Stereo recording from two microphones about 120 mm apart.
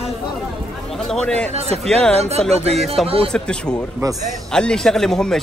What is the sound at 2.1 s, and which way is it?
Speech, 60° right (ahead or behind).